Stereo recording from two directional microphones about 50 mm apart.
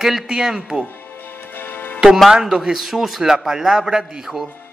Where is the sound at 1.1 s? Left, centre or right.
Left.